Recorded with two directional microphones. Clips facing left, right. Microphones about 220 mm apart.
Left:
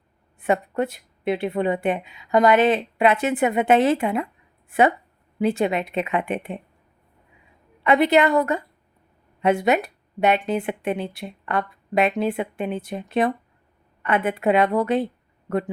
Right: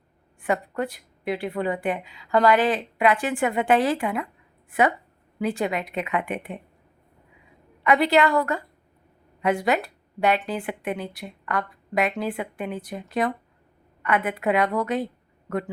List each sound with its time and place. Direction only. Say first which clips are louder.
0.3 s speech: left 4 dB; 25° left (ahead or behind)
5.4 s speech: left 4 dB; 25° left (ahead or behind)
7.9 s speech: left 2 dB; 20° left (ahead or behind)